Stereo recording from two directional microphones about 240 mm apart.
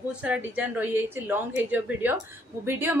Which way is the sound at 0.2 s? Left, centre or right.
Centre.